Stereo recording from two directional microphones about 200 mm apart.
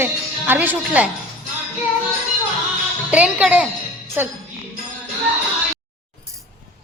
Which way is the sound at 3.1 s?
5° right (ahead or behind).